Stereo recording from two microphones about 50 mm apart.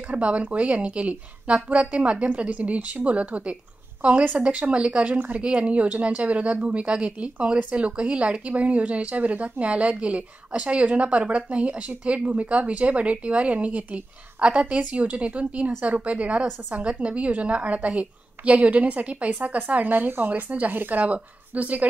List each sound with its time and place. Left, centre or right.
0.1 s speech: right
5.4 s speech: right